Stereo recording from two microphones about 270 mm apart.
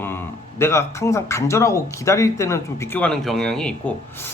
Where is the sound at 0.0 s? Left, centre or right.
Centre.